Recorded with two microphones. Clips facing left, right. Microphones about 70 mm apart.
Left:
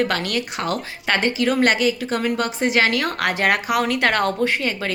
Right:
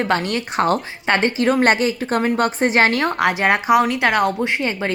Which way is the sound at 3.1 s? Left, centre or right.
Centre.